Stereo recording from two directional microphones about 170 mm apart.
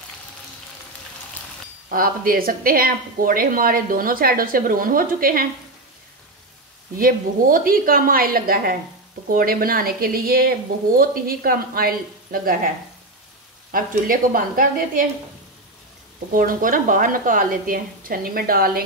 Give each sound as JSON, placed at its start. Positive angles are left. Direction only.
{"t": 1.9, "sound": "speech", "side_deg": -55}
{"t": 7.0, "sound": "speech", "side_deg": -55}
{"t": 13.7, "sound": "speech", "side_deg": -55}
{"t": 16.3, "sound": "speech", "side_deg": -55}